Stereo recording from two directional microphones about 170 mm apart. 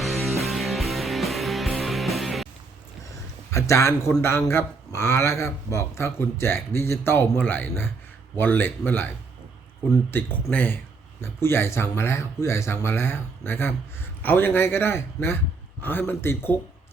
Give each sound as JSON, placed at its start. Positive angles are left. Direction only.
{"t": 0.0, "sound": "music", "side_deg": 0}
{"t": 3.5, "sound": "speech", "side_deg": 15}
{"t": 10.4, "sound": "speech", "side_deg": 10}